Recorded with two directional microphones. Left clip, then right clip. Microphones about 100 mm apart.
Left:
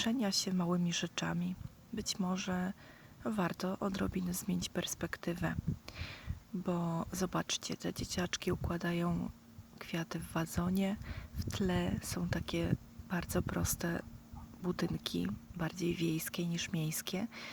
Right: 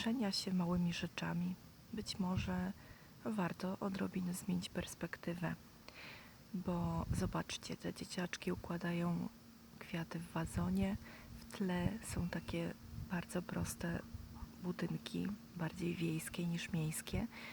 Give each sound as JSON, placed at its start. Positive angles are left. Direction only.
{"t": 0.0, "sound": "speech", "side_deg": 30}
{"t": 6.7, "sound": "speech", "side_deg": 30}